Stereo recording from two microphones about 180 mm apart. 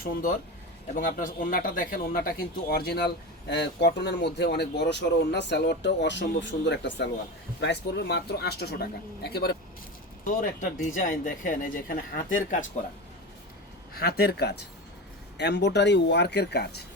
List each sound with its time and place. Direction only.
0.0 s speech: 50° left (ahead or behind); by 7.1 s 85° left
7.6 s speech: 70° left (ahead or behind)
10.2 s speech: 45° left (ahead or behind)
13.9 s speech: 60° left (ahead or behind)